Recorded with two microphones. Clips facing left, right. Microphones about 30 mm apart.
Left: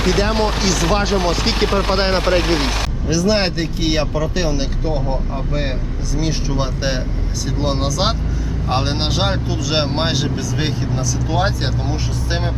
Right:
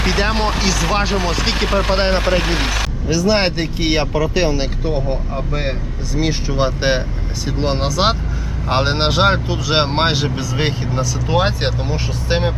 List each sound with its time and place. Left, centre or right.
0.0 s speech: right; by 2.2 s centre
3.1 s speech: centre
6.1 s speech: right